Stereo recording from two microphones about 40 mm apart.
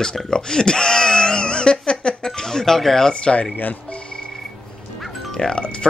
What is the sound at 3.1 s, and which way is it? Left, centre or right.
Speech, left.